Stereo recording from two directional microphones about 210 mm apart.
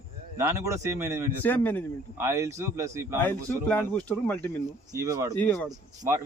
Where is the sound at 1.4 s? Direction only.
10° left (ahead or behind).